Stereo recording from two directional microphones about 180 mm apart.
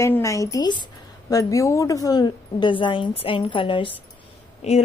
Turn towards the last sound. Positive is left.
turn(degrees=40)  # may be behind; listen again after turning